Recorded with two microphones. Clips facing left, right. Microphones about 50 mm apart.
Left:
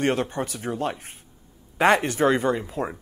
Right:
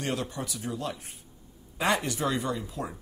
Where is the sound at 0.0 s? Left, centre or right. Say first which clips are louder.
Left 8 dB; left.